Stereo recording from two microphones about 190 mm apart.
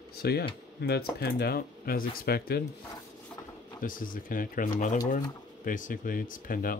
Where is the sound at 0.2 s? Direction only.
55° left (ahead or behind).